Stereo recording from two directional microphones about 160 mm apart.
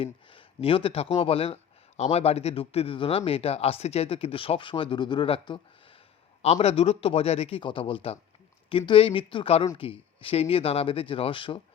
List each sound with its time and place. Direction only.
0.0 s speech: 35° left (ahead or behind)